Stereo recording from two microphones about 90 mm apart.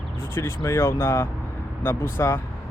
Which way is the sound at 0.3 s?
30° left (ahead or behind).